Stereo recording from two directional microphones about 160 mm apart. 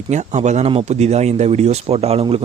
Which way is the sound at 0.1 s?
45° right (ahead or behind).